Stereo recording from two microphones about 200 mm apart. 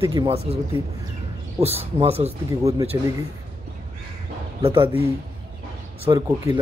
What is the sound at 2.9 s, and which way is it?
Speech, 20° right (ahead or behind).